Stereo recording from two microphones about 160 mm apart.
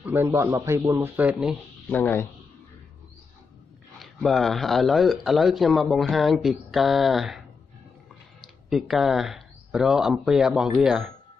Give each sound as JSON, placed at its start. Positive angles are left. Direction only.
{"t": 0.0, "sound": "speech", "side_deg": -15}
{"t": 1.9, "sound": "speech", "side_deg": 10}
{"t": 4.0, "sound": "speech", "side_deg": 0}